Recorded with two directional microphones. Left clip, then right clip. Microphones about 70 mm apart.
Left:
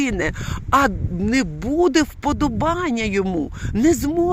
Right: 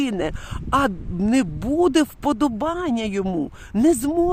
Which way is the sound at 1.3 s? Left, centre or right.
Right.